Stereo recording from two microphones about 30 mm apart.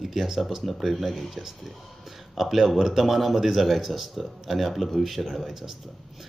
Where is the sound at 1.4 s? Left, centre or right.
Centre.